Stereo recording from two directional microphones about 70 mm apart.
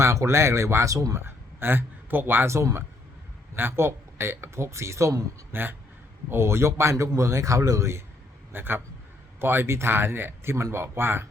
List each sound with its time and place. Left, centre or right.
0.0 s speech: right
1.2 s speech: right
3.5 s speech: right
5.5 s speech: right
6.9 s speech: right
8.5 s speech: right